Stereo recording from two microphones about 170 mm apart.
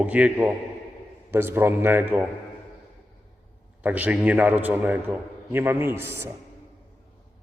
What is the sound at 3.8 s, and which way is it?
A man's voice, 10° right (ahead or behind).